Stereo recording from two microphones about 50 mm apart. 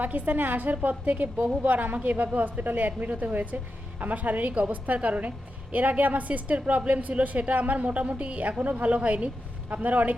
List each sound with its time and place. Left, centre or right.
0.0 s a woman's voice: right